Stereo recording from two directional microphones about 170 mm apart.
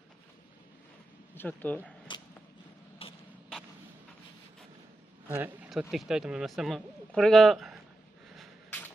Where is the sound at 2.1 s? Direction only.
30° left (ahead or behind).